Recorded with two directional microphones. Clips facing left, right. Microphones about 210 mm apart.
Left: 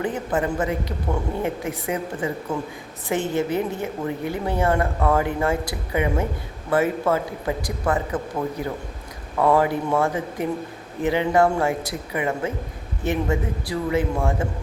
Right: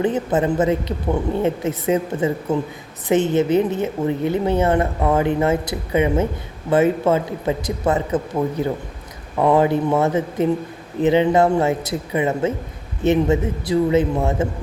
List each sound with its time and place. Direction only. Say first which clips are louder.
0.0 s a woman's voice: right 5 dB; 20° right (ahead or behind)